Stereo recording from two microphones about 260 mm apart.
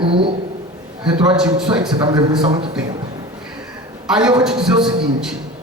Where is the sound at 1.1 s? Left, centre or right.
Centre.